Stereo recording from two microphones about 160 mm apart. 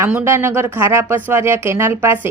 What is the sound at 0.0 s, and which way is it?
Speech, 10° right (ahead or behind).